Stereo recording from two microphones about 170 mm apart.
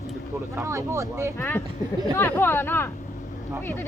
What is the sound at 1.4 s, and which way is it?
Speech, 10° left (ahead or behind).